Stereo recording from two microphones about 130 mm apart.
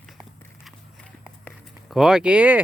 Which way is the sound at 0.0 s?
Centre (ahead or behind).